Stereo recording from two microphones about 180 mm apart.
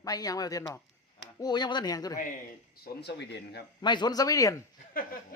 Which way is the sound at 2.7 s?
65° left (ahead or behind).